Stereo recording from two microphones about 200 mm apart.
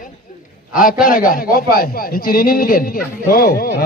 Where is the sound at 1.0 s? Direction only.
45° left (ahead or behind).